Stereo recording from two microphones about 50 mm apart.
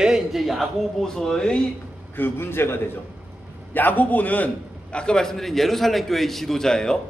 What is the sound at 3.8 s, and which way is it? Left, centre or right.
Speech, left.